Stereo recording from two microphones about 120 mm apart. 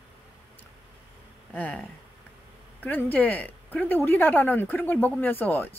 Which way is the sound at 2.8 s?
15° left (ahead or behind).